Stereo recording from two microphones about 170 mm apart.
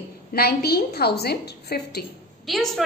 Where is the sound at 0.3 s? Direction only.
65° left (ahead or behind).